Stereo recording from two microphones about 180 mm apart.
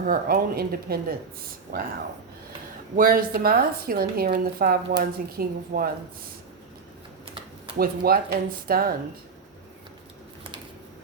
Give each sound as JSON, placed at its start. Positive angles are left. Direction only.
{"t": 0.0, "sound": "a woman's voice", "side_deg": -55}
{"t": 2.9, "sound": "a woman's voice", "side_deg": -50}
{"t": 7.8, "sound": "a woman's voice", "side_deg": -55}